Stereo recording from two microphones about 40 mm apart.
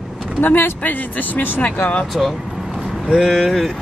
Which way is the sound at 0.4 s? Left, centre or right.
Left.